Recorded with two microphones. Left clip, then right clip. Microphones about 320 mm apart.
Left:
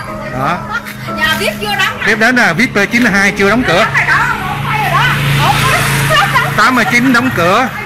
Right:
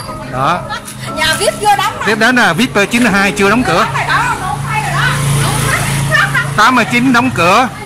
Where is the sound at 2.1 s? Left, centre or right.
Centre.